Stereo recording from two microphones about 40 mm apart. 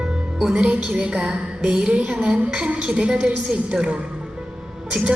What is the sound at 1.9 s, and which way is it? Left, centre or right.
Speech, right.